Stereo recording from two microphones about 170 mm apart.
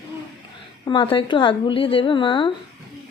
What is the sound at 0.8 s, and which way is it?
A woman's voice, 30° left (ahead or behind).